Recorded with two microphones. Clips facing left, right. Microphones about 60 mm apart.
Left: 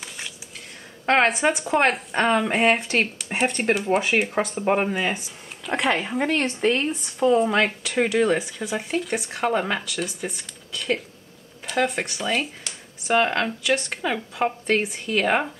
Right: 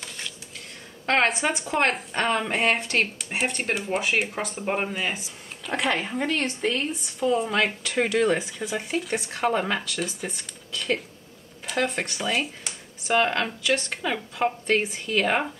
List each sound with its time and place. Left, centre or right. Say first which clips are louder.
1.0 s speech: left 3 dB; centre
4.6 s speech: left 4 dB; centre
6.3 s speech: left 5 dB; left
7.2 s speech: left 4 dB; centre